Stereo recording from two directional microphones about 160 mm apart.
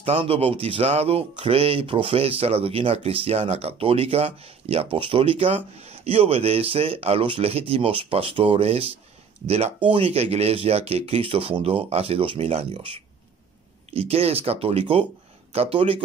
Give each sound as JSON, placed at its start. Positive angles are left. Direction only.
{"t": 0.0, "sound": "speech", "side_deg": -40}